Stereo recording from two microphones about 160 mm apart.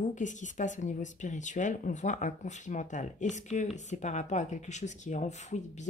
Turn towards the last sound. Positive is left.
turn(degrees=45)  # may be behind; listen again after turning